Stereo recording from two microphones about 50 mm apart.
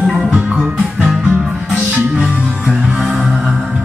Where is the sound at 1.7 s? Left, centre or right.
Centre.